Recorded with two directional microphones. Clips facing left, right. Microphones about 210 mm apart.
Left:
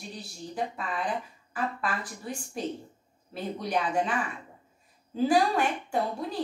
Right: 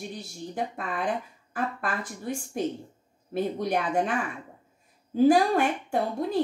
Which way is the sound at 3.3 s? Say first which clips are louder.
Right 4 dB; 55° right (ahead or behind).